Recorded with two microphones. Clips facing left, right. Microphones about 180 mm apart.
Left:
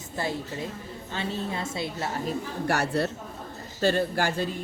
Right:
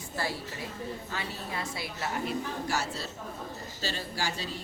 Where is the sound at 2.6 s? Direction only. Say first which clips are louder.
Left 8 dB; 60° left (ahead or behind).